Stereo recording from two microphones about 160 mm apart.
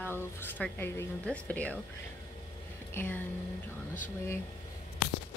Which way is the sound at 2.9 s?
10° left (ahead or behind).